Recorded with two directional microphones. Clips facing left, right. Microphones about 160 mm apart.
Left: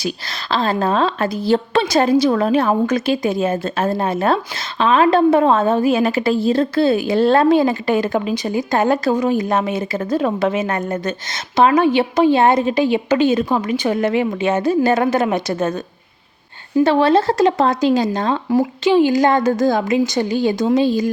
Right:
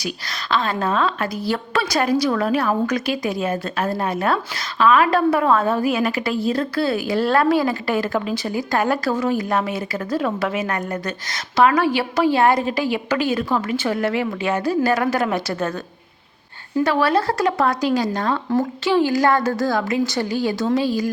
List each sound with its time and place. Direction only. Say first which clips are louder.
0.0 s a woman's voice: left 4 dB; 30° left (ahead or behind)
16.8 s a woman's voice: left 5 dB; 25° left (ahead or behind)